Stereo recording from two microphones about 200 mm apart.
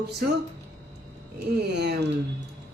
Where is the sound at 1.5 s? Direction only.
55° right (ahead or behind).